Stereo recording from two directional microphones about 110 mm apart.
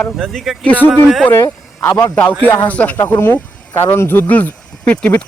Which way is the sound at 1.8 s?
30° left (ahead or behind).